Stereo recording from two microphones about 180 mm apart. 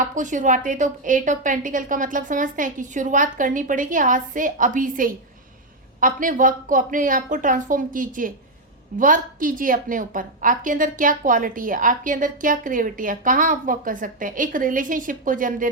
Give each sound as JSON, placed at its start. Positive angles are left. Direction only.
{"t": 0.0, "sound": "a woman's voice", "side_deg": -45}